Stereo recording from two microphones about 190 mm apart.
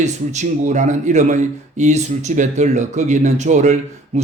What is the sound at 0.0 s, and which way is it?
Speech, 40° right (ahead or behind).